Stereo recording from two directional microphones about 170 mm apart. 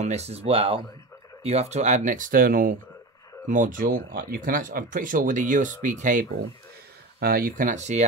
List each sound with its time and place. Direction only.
0.0 s speech: 40° right (ahead or behind)
7.2 s speech: 60° right (ahead or behind); by 8.0 s 45° right (ahead or behind)